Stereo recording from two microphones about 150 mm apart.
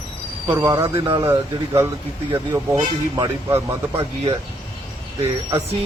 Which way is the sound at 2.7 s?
30° right (ahead or behind).